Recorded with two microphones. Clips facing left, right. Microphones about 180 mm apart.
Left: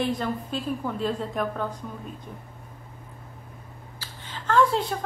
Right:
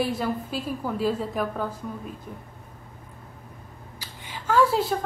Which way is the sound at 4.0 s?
10° right (ahead or behind).